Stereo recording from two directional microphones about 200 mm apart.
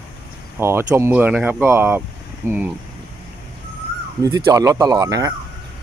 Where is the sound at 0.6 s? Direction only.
10° right (ahead or behind).